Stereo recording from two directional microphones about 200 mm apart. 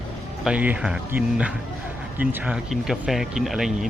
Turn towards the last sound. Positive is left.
turn(degrees=0)  # may be behind; listen again after turning